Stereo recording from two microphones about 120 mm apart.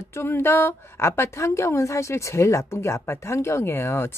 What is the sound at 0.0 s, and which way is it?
Speech, 20° left (ahead or behind).